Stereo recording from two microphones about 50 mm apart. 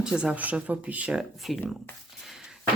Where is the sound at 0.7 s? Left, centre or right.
Right.